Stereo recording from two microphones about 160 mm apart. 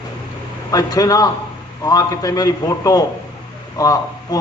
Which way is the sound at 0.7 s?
20° left (ahead or behind).